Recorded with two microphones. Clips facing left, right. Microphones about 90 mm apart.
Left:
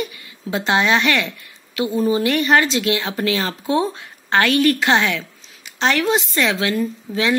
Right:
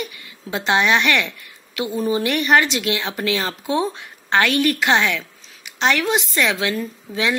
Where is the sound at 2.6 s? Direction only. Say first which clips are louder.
Left 2 dB; 30° left (ahead or behind).